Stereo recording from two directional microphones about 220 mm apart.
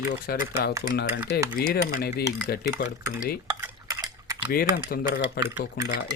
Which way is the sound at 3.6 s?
15° right (ahead or behind).